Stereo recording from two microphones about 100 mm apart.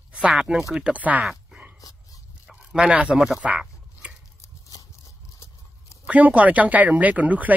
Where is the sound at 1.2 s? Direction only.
5° right (ahead or behind).